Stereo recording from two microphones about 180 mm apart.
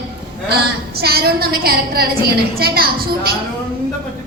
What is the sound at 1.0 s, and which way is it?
A woman's voice, 60° right (ahead or behind).